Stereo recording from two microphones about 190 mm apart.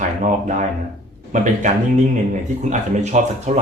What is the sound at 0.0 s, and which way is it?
Speech, 40° right (ahead or behind).